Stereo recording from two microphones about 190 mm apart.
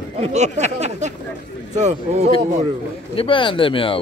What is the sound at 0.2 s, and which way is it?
Speech, 35° right (ahead or behind).